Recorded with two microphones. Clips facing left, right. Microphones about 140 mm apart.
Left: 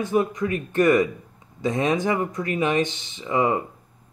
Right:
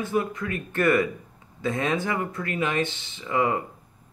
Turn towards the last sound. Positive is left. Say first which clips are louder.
# left 2 dB
turn(degrees=20)  # may be behind; listen again after turning